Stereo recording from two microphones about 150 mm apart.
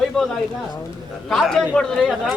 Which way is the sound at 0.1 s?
5° left (ahead or behind).